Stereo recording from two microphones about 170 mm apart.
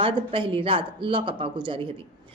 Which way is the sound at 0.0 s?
30° right (ahead or behind).